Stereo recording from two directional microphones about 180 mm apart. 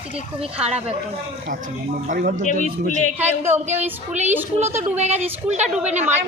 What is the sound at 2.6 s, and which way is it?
Speech, 40° left (ahead or behind).